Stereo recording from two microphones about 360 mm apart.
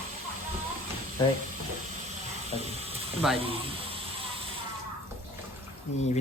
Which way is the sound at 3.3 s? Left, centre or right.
Centre.